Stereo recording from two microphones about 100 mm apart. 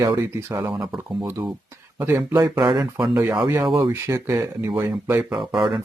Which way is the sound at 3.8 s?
30° right (ahead or behind).